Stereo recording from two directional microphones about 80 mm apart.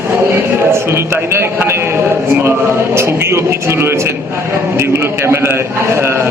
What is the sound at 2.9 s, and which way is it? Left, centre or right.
A man's voice, right.